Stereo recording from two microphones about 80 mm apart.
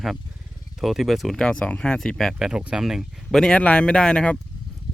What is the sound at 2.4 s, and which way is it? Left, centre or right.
Speech, centre.